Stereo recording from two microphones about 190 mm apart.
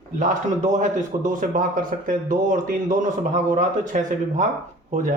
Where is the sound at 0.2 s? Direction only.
40° right (ahead or behind).